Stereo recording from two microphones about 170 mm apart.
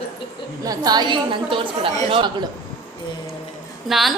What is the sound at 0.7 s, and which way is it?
A woman's voice, 25° right (ahead or behind).